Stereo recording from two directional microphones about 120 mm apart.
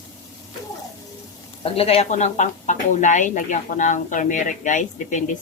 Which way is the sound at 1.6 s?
50° left (ahead or behind).